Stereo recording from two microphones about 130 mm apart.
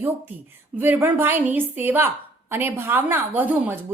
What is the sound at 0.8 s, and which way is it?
Speech, 15° right (ahead or behind).